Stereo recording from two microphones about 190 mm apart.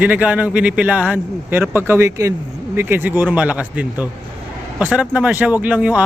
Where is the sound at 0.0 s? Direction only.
5° right (ahead or behind).